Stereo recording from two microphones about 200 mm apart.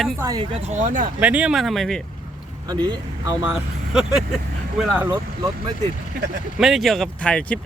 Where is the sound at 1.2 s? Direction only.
5° right (ahead or behind).